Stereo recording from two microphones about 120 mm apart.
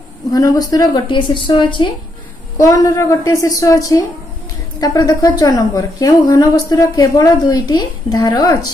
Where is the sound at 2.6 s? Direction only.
25° left (ahead or behind).